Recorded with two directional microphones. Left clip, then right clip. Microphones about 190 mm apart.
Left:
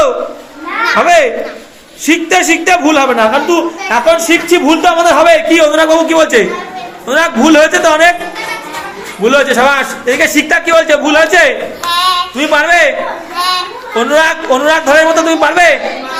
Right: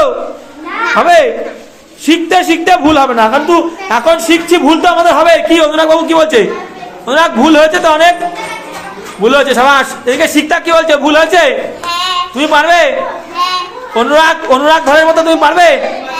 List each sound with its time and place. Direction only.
0.9 s a child's voice: 15° right (ahead or behind)
9.2 s a child's voice: 10° right (ahead or behind)
13.3 s children playing: centre (ahead or behind)
13.9 s a child's voice: 15° right (ahead or behind)